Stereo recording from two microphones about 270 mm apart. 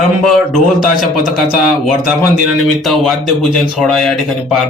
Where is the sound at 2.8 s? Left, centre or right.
Centre.